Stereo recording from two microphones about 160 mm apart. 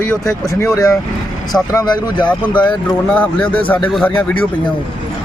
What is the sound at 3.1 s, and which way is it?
Speech, 10° left (ahead or behind).